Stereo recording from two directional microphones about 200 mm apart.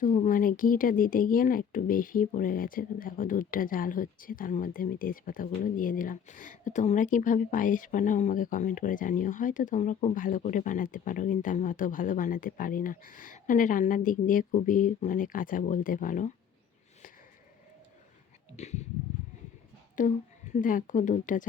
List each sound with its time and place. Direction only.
0.0 s speech: 40° left (ahead or behind)
18.5 s speech: 35° left (ahead or behind)
20.0 s speech: 40° left (ahead or behind)